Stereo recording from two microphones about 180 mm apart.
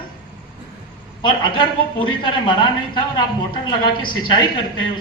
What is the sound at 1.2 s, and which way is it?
A man's voice, 25° left (ahead or behind).